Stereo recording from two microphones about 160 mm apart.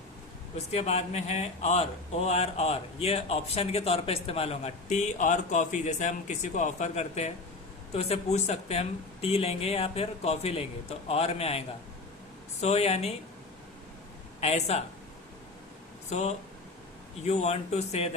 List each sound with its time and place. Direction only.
0.5 s speech: 45° left (ahead or behind)
14.4 s speech: 40° left (ahead or behind)
16.0 s speech: 45° left (ahead or behind)